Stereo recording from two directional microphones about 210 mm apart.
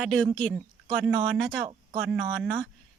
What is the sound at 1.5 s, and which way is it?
Speech, 20° right (ahead or behind).